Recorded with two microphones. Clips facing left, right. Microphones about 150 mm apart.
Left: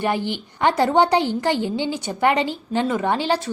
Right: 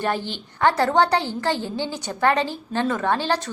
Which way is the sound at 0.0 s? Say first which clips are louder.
Left 3 dB; 15° left (ahead or behind).